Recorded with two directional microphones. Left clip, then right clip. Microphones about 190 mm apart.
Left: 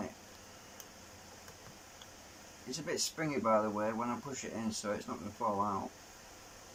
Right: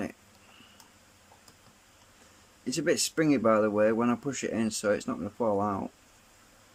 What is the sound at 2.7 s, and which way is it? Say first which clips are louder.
Speech: right 10 dB; 55° right (ahead or behind).